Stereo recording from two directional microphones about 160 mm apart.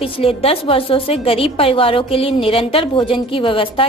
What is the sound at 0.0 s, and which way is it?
A woman's voice, 35° left (ahead or behind).